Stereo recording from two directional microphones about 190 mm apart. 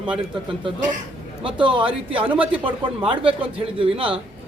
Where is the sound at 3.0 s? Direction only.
30° right (ahead or behind).